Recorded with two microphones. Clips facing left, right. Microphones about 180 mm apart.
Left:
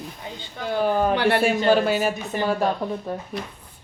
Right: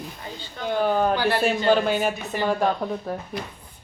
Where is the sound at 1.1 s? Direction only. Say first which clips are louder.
Left 3 dB; 65° left (ahead or behind).